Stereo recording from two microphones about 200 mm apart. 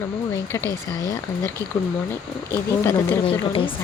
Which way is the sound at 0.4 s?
15° left (ahead or behind).